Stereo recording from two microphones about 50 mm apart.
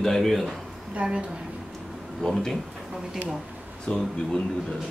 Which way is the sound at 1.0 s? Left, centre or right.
Right.